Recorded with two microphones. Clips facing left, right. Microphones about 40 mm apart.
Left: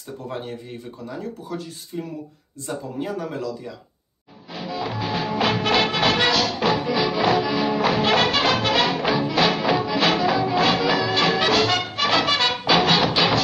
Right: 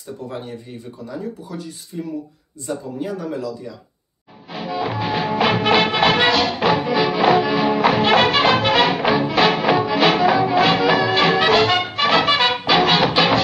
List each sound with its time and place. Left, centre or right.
1.9 s speech: centre
4.5 s music: centre
6.9 s music: centre
7.2 s music: right